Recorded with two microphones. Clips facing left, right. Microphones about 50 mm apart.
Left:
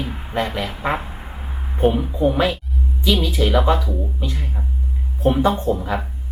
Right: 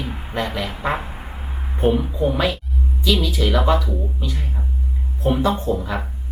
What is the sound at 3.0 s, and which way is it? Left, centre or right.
Speech, centre.